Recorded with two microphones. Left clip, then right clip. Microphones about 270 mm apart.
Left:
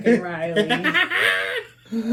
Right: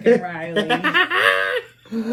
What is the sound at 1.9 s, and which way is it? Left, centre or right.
Laughter, right.